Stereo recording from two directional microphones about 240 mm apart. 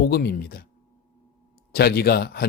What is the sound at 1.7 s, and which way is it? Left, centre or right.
Speech, left.